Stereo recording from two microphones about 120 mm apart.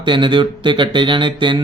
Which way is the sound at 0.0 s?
40° right (ahead or behind).